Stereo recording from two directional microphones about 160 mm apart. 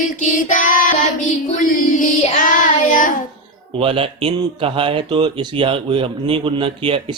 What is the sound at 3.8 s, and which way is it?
Mantra, 35° right (ahead or behind).